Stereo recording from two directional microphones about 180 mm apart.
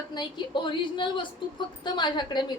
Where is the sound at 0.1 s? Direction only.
25° left (ahead or behind).